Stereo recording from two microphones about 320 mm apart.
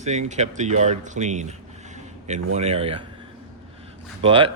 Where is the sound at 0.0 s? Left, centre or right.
Right.